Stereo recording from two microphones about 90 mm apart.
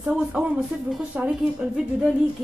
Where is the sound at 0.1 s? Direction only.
10° right (ahead or behind).